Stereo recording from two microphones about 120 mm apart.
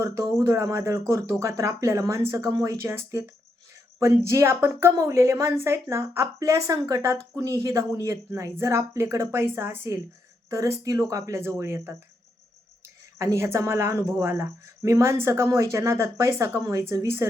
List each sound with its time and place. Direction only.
0.0 s a woman's voice: 25° right (ahead or behind)
13.1 s a woman's voice: 25° right (ahead or behind)